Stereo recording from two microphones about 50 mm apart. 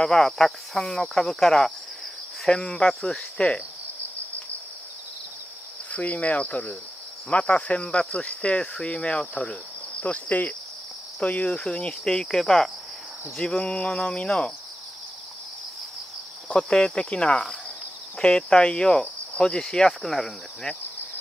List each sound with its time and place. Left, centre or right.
0.0 s cricket: centre
5.9 s speech: left
9.3 s insect: left
11.1 s speech: left
11.6 s cricket: centre
16.4 s speech: centre
18.2 s cricket: centre